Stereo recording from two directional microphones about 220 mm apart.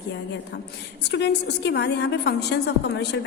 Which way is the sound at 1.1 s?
50° left (ahead or behind).